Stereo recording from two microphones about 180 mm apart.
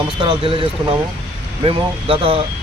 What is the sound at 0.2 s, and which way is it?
Speech, 30° right (ahead or behind).